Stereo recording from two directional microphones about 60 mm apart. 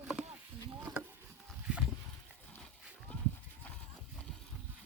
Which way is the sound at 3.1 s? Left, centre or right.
Left.